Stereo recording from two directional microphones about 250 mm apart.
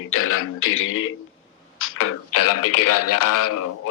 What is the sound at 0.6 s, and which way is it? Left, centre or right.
Speech, left.